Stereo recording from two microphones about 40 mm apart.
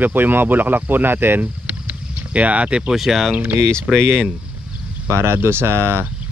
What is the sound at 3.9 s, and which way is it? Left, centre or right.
Speech, centre.